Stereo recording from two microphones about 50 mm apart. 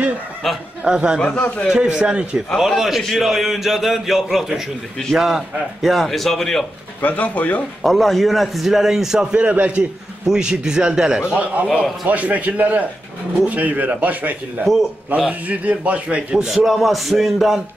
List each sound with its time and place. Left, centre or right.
0.8 s a man's voice: centre
2.5 s a man's voice: centre
7.0 s speech: left
7.8 s a man's voice: centre
9.4 s a man's voice: right
12.1 s a man's voice: right
14.6 s a man's voice: centre
15.0 s a man's voice: right
16.4 s a man's voice: centre